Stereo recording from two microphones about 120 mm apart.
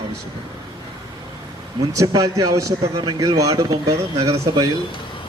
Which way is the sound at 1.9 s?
30° right (ahead or behind).